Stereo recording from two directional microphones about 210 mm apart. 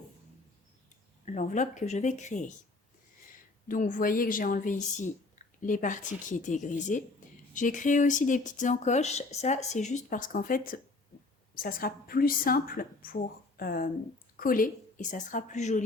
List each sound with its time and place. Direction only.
1.2 s speech: 35° left (ahead or behind)
3.7 s a woman's voice: 40° left (ahead or behind)